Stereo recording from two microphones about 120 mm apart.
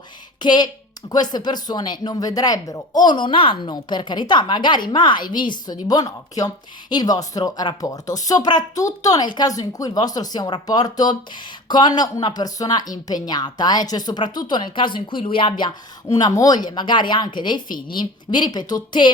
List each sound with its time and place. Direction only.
0.3 s speech: 35° left (ahead or behind)